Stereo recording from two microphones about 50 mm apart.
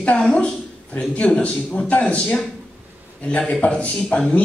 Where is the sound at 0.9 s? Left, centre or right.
Left.